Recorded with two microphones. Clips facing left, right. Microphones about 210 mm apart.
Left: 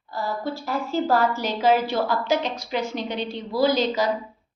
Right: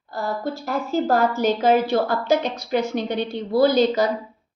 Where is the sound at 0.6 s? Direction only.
45° right (ahead or behind).